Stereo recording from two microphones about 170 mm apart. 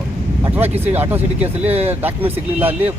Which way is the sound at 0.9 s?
10° right (ahead or behind).